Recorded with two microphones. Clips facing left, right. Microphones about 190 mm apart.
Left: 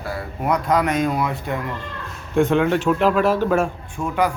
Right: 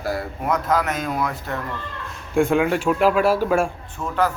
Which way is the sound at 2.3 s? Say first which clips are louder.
Left 1 dB; 10° right (ahead or behind).